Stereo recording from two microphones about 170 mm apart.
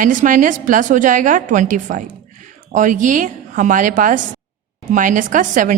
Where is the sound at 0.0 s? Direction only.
50° right (ahead or behind).